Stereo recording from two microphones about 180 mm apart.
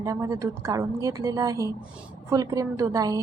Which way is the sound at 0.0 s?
15° right (ahead or behind).